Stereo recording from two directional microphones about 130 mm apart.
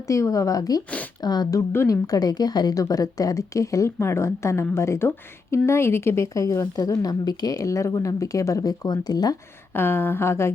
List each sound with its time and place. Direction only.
0.1 s a woman's voice: 25° left (ahead or behind)
9.7 s speech: 15° left (ahead or behind)